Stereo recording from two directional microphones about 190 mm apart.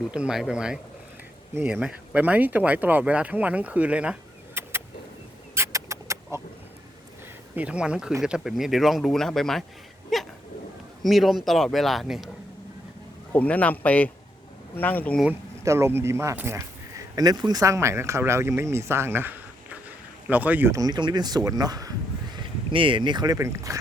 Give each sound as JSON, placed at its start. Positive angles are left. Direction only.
{"t": 0.1, "sound": "speech", "side_deg": -5}
{"t": 5.5, "sound": "a sound", "side_deg": -15}
{"t": 7.5, "sound": "speech", "side_deg": -5}
{"t": 13.3, "sound": "speech", "side_deg": 5}
{"t": 15.2, "sound": "speech", "side_deg": -10}